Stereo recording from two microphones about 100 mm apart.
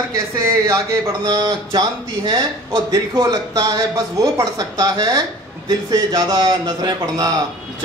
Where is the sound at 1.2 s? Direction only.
45° right (ahead or behind).